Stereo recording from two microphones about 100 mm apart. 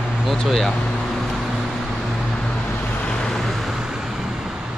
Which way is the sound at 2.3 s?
10° left (ahead or behind).